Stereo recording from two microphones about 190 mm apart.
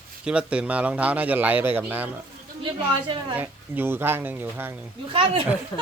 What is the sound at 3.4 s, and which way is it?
A man's voice, 10° right (ahead or behind).